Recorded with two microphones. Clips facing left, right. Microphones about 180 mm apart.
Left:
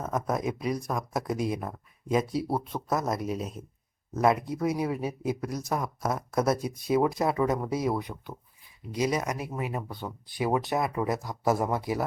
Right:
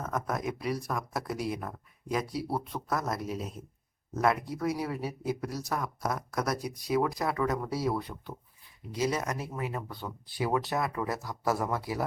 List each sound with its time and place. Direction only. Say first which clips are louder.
0.0 s speech: left 3 dB; 20° left (ahead or behind)